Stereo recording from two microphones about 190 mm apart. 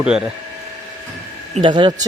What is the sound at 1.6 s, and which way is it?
Speech, 25° right (ahead or behind).